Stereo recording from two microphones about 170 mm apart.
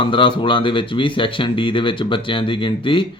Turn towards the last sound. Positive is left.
turn(degrees=30)  # may be behind; listen again after turning